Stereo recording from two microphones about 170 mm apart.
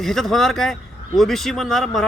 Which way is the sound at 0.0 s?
Centre (ahead or behind).